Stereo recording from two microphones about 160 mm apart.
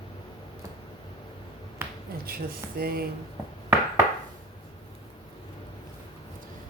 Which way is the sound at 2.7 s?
70° right (ahead or behind).